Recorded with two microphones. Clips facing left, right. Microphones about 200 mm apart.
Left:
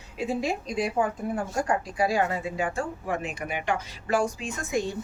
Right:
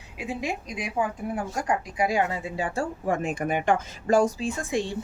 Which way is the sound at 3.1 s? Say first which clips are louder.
Right 5 dB; 45° right (ahead or behind).